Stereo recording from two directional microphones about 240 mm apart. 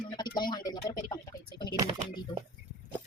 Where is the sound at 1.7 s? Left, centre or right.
Right.